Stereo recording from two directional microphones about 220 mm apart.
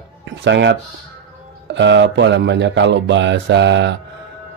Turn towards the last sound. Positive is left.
turn(degrees=-55)  # may be behind; listen again after turning